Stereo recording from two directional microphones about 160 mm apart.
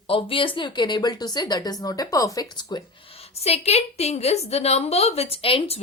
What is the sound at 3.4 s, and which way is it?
A woman's voice, 40° left (ahead or behind).